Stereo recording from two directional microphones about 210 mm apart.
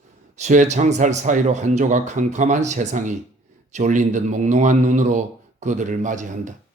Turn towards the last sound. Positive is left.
turn(degrees=-35)  # may be behind; listen again after turning